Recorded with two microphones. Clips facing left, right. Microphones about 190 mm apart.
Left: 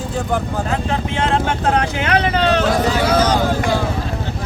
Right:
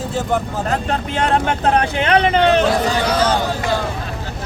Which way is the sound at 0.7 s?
40° right (ahead or behind).